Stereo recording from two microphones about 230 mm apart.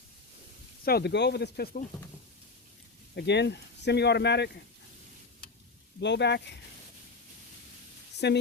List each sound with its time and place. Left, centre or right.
0.9 s speech: left
3.2 s speech: left
6.0 s speech: left
8.2 s speech: left